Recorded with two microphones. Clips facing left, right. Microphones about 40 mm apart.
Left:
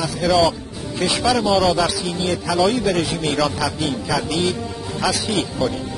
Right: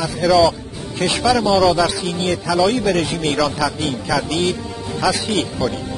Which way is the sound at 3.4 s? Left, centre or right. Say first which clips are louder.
Right 1 dB; centre.